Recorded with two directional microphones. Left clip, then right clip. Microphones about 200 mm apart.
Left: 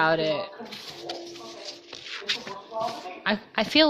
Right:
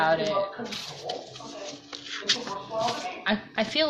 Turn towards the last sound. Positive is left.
turn(degrees=50)  # may be behind; listen again after turning